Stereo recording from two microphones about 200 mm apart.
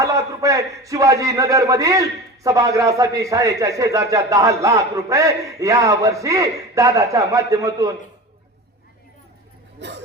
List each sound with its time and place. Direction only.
0.0 s a man's voice: 15° right (ahead or behind)